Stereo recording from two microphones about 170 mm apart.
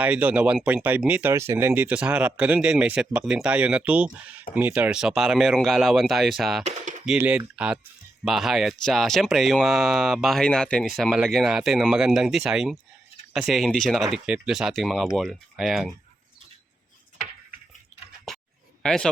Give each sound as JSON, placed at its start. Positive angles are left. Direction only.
{"t": 0.0, "sound": "speech", "side_deg": -10}
{"t": 6.7, "sound": "a sound", "side_deg": -45}
{"t": 7.0, "sound": "speech", "side_deg": -5}
{"t": 18.8, "sound": "speech", "side_deg": 5}